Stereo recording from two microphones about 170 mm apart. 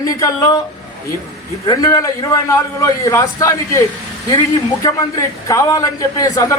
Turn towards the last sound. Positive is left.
turn(degrees=20)  # may be behind; listen again after turning